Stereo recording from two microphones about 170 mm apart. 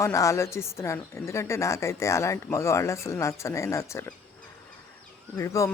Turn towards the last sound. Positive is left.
turn(degrees=15)  # may be behind; listen again after turning